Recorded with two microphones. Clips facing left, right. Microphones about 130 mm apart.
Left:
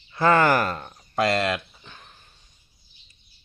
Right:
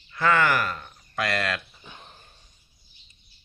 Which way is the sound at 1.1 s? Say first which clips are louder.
Left 5 dB; 25° left (ahead or behind).